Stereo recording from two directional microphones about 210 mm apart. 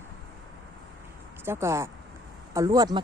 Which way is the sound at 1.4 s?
10° right (ahead or behind).